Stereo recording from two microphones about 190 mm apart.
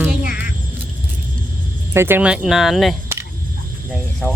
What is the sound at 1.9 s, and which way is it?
Speech, 10° right (ahead or behind).